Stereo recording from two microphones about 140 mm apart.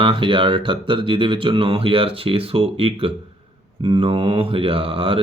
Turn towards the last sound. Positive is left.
turn(degrees=-40)  # may be behind; listen again after turning